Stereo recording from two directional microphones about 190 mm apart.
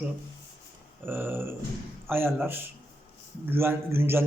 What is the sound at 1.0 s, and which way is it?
A man's voice, 10° right (ahead or behind).